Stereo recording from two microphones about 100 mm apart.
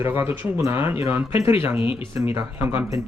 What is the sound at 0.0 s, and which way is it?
Speech, 20° right (ahead or behind).